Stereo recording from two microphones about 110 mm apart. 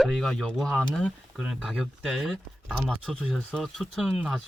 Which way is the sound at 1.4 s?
5° right (ahead or behind).